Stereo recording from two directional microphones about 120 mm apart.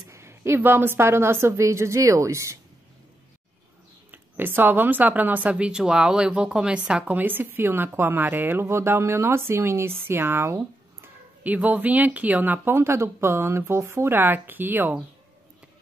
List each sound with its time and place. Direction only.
0.0 s speech: 25° right (ahead or behind)
4.1 s speech: 15° right (ahead or behind)